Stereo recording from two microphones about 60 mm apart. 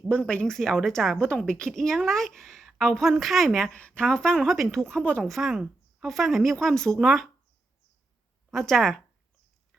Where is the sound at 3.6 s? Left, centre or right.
Centre.